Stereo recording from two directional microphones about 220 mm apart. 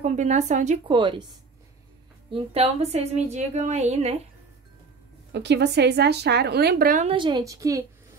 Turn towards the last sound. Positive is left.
turn(degrees=-15)  # may be behind; listen again after turning